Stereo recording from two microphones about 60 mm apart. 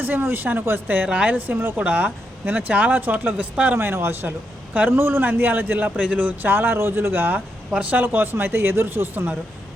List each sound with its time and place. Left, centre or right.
0.0 s a man's voice: right
1.0 s speech: right
3.8 s a man's voice: right